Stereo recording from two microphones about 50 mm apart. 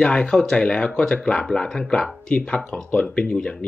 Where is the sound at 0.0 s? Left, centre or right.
Centre.